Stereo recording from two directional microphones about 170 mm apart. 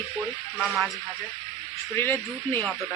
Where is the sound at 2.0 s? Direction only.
10° left (ahead or behind).